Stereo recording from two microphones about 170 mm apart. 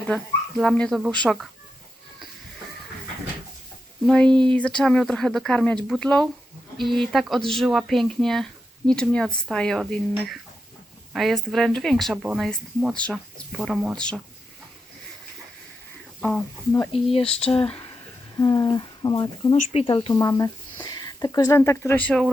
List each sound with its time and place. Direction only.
0.6 s speech: 5° left (ahead or behind)
4.0 s speech: 5° left (ahead or behind)
16.9 s speech: 35° left (ahead or behind)
18.3 s speech: 20° left (ahead or behind); by 22.3 s 5° left (ahead or behind)